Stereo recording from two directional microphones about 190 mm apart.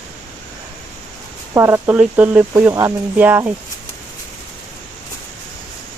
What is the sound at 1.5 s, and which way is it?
Speech, 15° right (ahead or behind).